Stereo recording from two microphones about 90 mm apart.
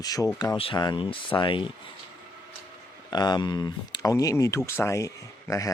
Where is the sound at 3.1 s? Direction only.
55° left (ahead or behind).